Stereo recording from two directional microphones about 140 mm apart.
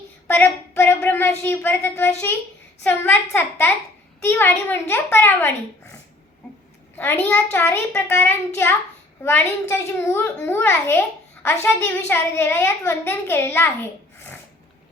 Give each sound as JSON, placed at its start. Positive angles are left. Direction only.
{"t": 0.3, "sound": "child singing", "side_deg": 15}
{"t": 1.0, "sound": "a child's voice", "side_deg": 15}
{"t": 6.9, "sound": "a child's voice", "side_deg": 15}